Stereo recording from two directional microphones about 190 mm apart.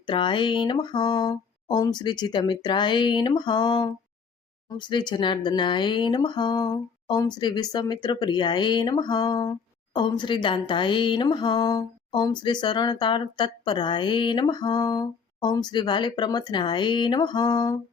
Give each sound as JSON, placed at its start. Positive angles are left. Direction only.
{"t": 0.1, "sound": "speech", "side_deg": 25}